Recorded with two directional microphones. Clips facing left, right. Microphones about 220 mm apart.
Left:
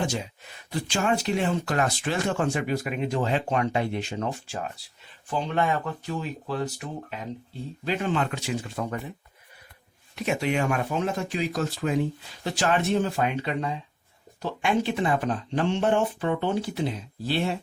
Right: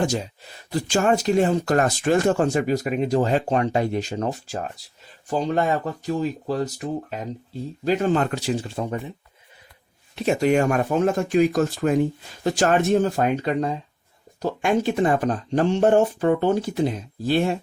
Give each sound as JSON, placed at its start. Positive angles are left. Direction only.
{"t": 0.7, "sound": "speech", "side_deg": -40}
{"t": 10.2, "sound": "speech", "side_deg": -40}